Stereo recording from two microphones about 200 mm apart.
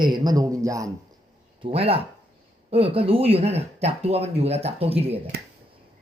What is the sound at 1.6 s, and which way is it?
Speech, 30° right (ahead or behind).